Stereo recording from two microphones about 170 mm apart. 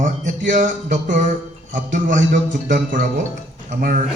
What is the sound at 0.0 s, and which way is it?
Speech, 50° right (ahead or behind).